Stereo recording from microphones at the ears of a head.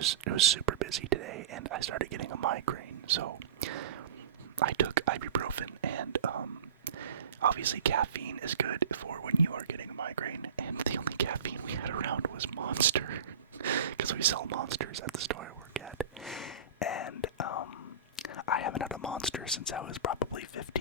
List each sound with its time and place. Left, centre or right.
0.0 s speech: right
16.8 s speech: left
18.2 s whispering: left
19.7 s speech: left